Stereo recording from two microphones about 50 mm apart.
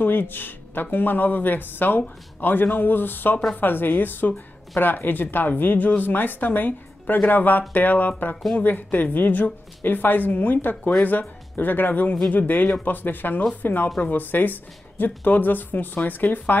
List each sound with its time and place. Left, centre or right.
0.0 s speech: left